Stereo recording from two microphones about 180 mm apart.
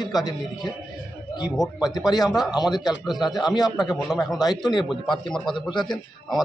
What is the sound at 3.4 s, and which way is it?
Speech, 25° left (ahead or behind).